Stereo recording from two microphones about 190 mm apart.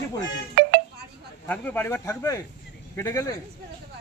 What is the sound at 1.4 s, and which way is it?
Speech, 10° left (ahead or behind).